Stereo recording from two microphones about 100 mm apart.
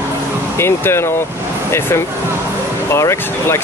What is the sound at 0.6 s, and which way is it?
Speech, 25° left (ahead or behind).